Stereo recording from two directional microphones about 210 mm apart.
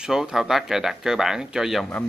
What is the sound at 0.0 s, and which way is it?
Speech, centre (ahead or behind).